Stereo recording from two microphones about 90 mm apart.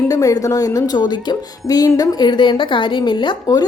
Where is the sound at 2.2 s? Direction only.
60° left (ahead or behind).